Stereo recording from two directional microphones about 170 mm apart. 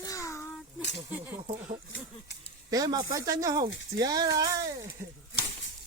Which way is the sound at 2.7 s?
20° right (ahead or behind).